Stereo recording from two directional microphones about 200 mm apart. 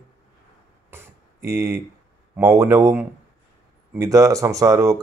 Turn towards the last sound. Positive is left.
turn(degrees=-15)  # may be behind; listen again after turning